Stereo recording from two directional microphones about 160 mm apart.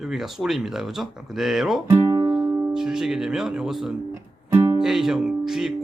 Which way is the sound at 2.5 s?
15° right (ahead or behind).